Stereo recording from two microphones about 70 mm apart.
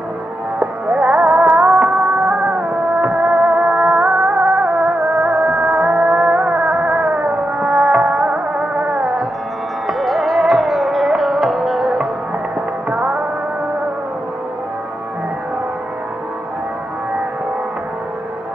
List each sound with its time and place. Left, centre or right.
0.6 s music: centre
9.8 s music: centre